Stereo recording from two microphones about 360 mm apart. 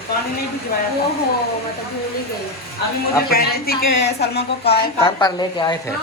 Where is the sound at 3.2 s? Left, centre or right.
Left.